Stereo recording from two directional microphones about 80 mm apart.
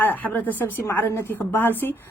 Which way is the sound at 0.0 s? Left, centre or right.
Left.